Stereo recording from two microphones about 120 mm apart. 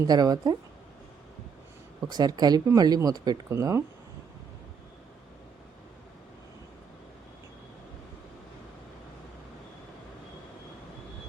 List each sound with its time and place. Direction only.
0.0 s speech: 30° right (ahead or behind)
2.0 s speech: 35° right (ahead or behind)
3.5 s speech: 25° right (ahead or behind)